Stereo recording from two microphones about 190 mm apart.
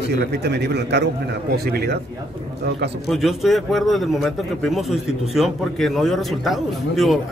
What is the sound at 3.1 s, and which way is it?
A man's voice, centre (ahead or behind).